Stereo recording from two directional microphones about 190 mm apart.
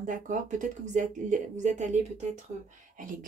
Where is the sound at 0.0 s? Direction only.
40° right (ahead or behind).